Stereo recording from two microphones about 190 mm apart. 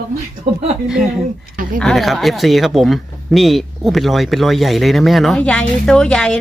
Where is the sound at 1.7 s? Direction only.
Centre (ahead or behind).